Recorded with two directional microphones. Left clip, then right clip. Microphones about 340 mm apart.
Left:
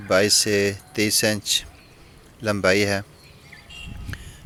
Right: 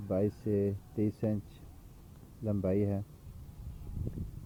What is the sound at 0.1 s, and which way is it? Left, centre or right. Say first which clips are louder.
Speech: left 14 dB; left.